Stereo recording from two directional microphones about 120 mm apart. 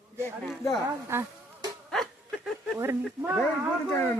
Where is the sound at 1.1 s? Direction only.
20° right (ahead or behind).